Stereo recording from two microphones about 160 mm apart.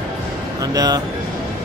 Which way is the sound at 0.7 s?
25° right (ahead or behind).